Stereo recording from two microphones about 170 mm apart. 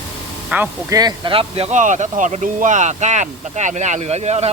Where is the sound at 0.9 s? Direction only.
25° right (ahead or behind).